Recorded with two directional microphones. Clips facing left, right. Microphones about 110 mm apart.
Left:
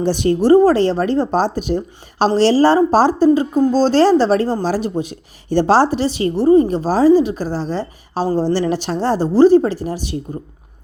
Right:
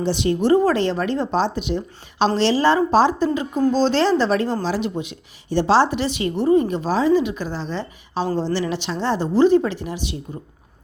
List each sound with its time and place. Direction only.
0.0 s a woman's voice: 45° left (ahead or behind)
0.4 s a woman's voice: 35° left (ahead or behind)